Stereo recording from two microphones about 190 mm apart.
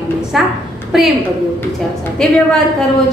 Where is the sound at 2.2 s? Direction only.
5° left (ahead or behind).